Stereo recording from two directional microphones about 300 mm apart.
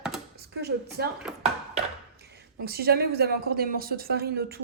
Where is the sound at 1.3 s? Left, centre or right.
Centre.